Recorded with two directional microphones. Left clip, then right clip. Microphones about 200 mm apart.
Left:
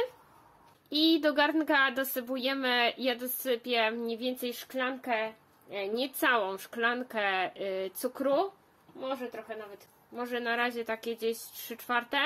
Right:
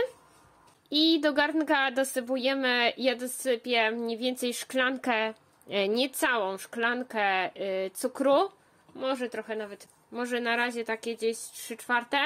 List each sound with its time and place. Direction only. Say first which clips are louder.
0.8 s speech: right 2 dB; 20° right (ahead or behind)
9.0 s speech: right 5 dB; 45° right (ahead or behind)
10.1 s speech: right 3 dB; 30° right (ahead or behind)